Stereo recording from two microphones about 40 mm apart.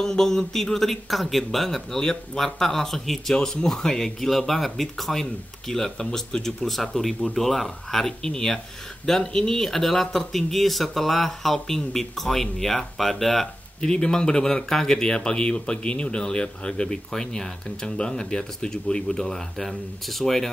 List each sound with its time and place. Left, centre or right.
0.0 s speech: centre
13.7 s speech: centre